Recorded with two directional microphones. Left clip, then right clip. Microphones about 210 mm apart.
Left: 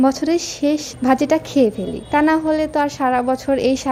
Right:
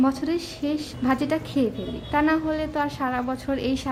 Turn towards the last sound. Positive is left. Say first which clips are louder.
# left 9 dB
turn(degrees=25)  # may be behind; listen again after turning